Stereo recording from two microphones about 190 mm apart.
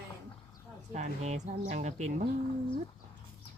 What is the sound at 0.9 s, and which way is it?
Speech, 35° right (ahead or behind).